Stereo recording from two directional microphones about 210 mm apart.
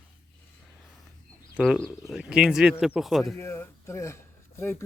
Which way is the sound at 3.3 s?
10° left (ahead or behind).